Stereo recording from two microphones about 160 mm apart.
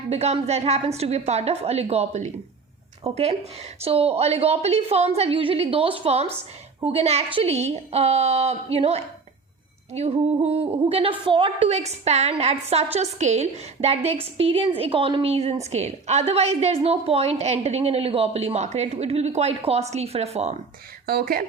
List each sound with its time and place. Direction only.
0.1 s a woman's voice: 40° right (ahead or behind)
21.1 s speech: 70° right (ahead or behind)